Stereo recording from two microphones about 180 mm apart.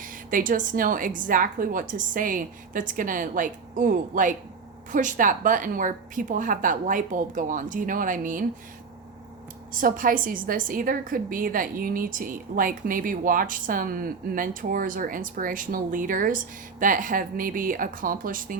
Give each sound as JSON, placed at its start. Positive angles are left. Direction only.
{"t": 0.0, "sound": "a woman's voice", "side_deg": -50}
{"t": 9.7, "sound": "a woman's voice", "side_deg": -50}